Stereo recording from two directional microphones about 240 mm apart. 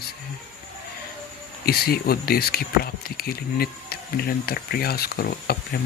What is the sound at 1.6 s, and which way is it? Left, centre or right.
Speech, left.